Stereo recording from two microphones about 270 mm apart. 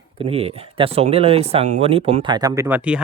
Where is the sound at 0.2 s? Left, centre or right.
Right.